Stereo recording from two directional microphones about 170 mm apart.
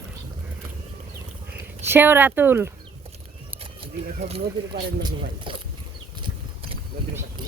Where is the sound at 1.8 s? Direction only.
15° right (ahead or behind).